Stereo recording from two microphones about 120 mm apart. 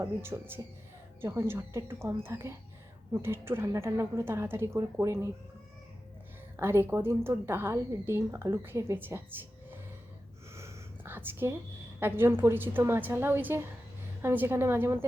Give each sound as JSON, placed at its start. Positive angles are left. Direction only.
{"t": 0.0, "sound": "a woman's voice", "side_deg": -20}
{"t": 6.6, "sound": "a woman's voice", "side_deg": -20}
{"t": 10.5, "sound": "a sound", "side_deg": -20}
{"t": 11.9, "sound": "a woman's voice", "side_deg": -20}